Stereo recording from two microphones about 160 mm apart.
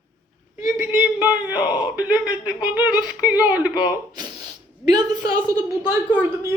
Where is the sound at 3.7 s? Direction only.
25° left (ahead or behind).